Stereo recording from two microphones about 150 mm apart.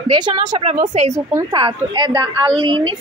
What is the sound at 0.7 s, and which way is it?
Speech, 55° right (ahead or behind).